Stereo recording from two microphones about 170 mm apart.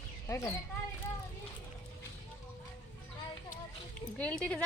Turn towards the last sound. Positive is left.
turn(degrees=10)  # may be behind; listen again after turning